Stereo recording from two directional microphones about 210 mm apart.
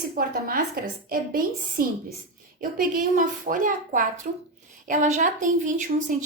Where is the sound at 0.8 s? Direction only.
45° right (ahead or behind).